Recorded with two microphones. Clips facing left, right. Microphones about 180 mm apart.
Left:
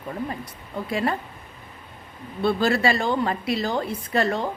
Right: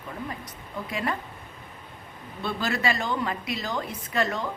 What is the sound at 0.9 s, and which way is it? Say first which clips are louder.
Speech: left 5 dB; 35° left (ahead or behind).